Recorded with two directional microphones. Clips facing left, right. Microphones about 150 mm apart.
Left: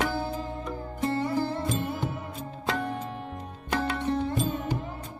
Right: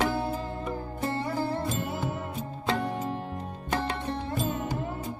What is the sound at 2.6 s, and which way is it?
Music, 35° right (ahead or behind).